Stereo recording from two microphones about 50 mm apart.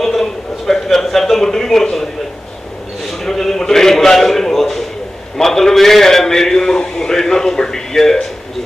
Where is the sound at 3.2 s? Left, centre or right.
Centre.